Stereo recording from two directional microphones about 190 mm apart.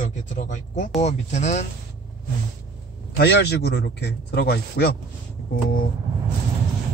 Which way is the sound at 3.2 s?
60° left (ahead or behind).